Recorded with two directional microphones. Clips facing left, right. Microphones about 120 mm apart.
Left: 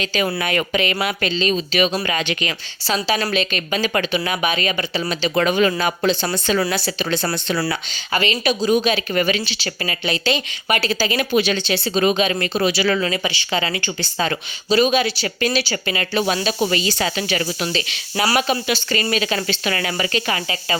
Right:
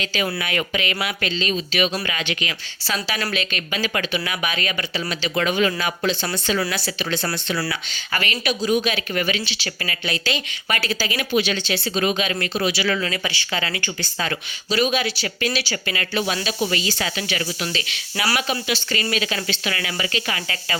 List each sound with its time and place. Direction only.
0.0 s speech: 40° left (ahead or behind)
4.2 s speech: 25° left (ahead or behind)
5.3 s speech: 40° left (ahead or behind)
11.3 s speech: 45° left (ahead or behind)
11.5 s speech: 30° left (ahead or behind)
13.1 s speech: 20° left (ahead or behind)
18.7 s speech: 40° left (ahead or behind)